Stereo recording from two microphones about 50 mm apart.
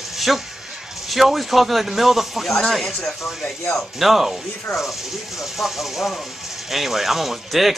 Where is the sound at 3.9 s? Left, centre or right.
Centre.